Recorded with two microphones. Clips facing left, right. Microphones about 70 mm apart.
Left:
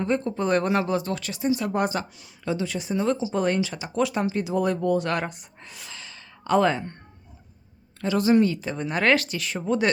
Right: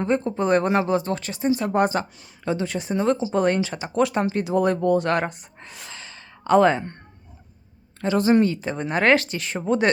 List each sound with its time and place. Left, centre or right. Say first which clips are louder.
0.0 s speech: right 2 dB; right
8.0 s speech: right 2 dB; right